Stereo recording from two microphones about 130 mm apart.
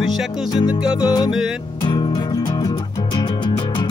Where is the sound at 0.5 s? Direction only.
35° left (ahead or behind).